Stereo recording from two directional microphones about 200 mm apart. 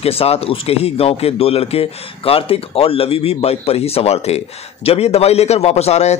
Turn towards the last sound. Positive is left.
turn(degrees=35)  # may be behind; listen again after turning